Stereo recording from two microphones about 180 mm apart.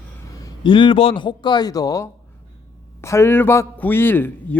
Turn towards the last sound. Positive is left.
turn(degrees=10)  # may be behind; listen again after turning